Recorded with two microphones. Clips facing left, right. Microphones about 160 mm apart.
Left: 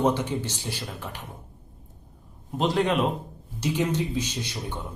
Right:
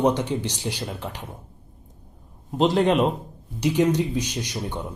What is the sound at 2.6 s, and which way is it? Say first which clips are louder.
Speech: right 4 dB; 40° right (ahead or behind).